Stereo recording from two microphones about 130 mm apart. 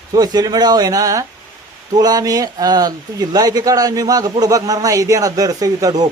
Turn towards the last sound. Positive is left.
turn(degrees=-30)  # may be behind; listen again after turning